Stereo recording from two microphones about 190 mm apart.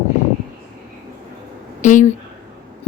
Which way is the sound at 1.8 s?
40° left (ahead or behind).